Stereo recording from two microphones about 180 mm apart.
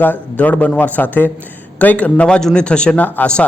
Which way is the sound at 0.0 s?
10° left (ahead or behind).